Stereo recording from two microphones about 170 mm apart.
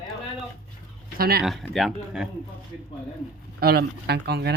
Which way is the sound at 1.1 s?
60° right (ahead or behind).